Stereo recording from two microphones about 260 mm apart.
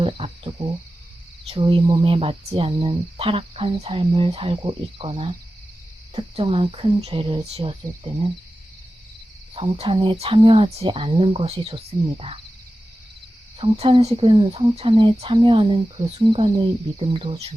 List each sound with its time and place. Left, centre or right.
0.0 s cricket: right
1.5 s speech: right
9.6 s speech: right
13.6 s speech: right